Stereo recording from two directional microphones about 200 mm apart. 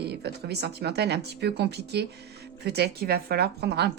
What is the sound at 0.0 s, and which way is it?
A woman's voice, 55° right (ahead or behind).